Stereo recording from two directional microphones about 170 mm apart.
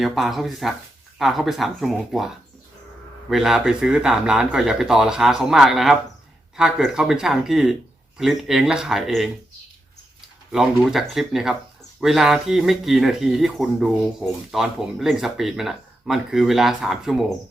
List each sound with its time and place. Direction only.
0.0 s speech: centre (ahead or behind)
10.5 s speech: centre (ahead or behind)